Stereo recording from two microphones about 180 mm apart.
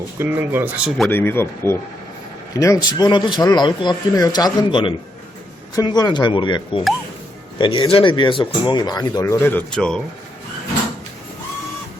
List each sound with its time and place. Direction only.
0.2 s speech: 10° right (ahead or behind)
1.1 s speech: 10° left (ahead or behind)